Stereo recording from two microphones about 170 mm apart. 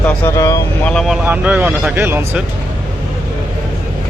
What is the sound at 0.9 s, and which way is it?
Speech, centre (ahead or behind).